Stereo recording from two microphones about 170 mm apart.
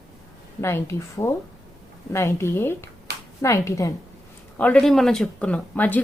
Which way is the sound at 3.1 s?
75° right (ahead or behind).